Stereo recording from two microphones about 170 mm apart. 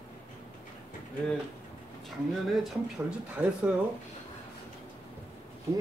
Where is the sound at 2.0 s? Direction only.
Centre (ahead or behind).